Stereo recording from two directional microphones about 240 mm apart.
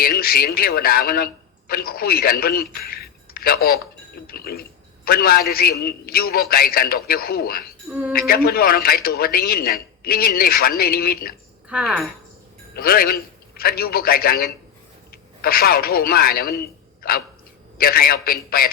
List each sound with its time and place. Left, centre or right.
0.0 s a man's voice: left
11.7 s speech: centre
12.7 s a man's voice: left